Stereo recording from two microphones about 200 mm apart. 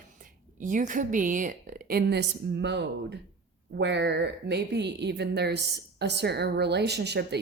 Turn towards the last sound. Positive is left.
turn(degrees=-55)  # may be behind; listen again after turning